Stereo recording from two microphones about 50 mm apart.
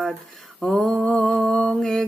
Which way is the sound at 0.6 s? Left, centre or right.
Centre.